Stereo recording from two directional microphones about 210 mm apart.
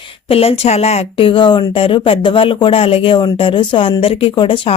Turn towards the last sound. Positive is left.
turn(degrees=25)  # may be behind; listen again after turning